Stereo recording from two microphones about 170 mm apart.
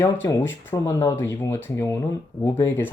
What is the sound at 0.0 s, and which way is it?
Speech, 15° left (ahead or behind).